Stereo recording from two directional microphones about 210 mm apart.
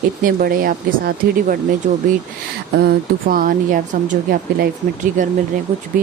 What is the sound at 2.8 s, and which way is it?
Speech, 45° right (ahead or behind).